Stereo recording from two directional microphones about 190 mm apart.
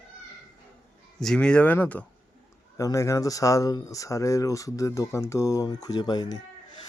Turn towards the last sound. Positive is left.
turn(degrees=20)  # may be behind; listen again after turning